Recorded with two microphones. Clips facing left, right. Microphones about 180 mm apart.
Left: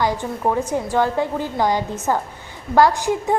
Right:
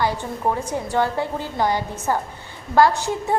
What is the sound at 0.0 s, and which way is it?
A woman's voice, 15° left (ahead or behind).